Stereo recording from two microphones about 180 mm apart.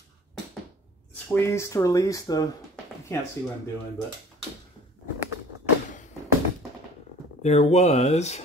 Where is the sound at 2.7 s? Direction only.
5° left (ahead or behind).